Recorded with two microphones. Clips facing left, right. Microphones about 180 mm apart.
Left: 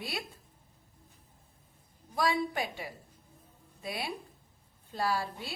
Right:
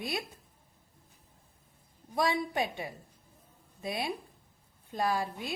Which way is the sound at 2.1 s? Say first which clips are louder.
Right 1 dB; 25° right (ahead or behind).